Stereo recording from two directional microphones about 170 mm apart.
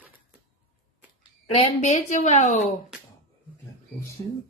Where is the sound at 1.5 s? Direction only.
40° left (ahead or behind).